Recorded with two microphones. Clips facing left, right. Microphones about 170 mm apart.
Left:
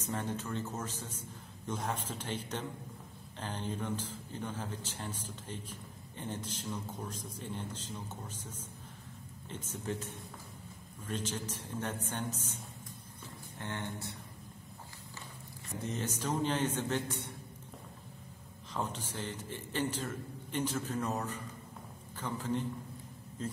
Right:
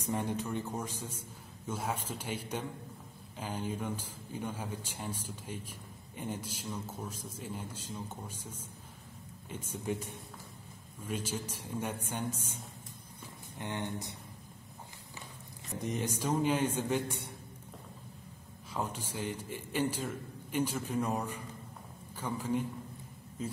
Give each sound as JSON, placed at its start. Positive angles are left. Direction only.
{"t": 0.0, "sound": "a man's voice", "side_deg": -15}
{"t": 13.6, "sound": "a man's voice", "side_deg": -15}
{"t": 15.8, "sound": "a man's voice", "side_deg": -15}
{"t": 18.7, "sound": "a man's voice", "side_deg": -10}